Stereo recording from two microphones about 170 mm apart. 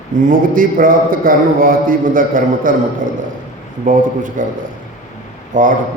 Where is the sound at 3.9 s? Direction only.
50° right (ahead or behind).